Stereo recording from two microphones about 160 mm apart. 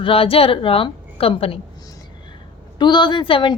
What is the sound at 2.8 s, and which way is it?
Speech, 30° left (ahead or behind).